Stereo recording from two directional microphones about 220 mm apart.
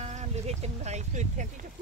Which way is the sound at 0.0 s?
30° right (ahead or behind).